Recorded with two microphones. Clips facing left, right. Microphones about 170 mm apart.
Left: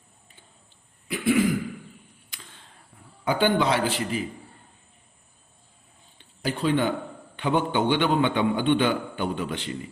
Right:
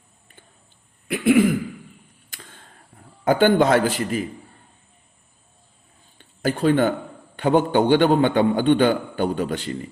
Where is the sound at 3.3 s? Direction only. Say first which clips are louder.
Right 6 dB; 50° right (ahead or behind).